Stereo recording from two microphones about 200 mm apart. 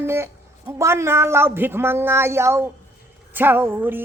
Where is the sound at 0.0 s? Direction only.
10° right (ahead or behind).